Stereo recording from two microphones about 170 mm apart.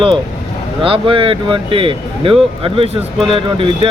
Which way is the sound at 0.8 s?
30° right (ahead or behind).